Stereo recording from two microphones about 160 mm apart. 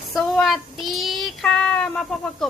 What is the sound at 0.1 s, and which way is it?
Child singing, centre (ahead or behind).